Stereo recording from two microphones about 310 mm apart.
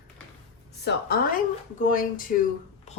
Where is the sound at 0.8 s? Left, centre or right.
Left.